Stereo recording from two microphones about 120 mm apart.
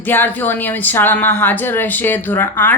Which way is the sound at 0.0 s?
15° left (ahead or behind).